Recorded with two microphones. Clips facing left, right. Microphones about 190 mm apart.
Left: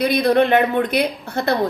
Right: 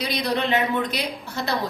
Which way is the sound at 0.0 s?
55° left (ahead or behind).